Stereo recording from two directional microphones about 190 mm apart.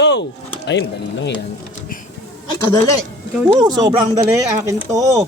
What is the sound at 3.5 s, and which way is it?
Speech, 20° right (ahead or behind).